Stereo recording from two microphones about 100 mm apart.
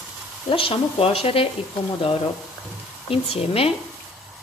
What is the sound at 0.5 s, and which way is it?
Speech, 65° left (ahead or behind).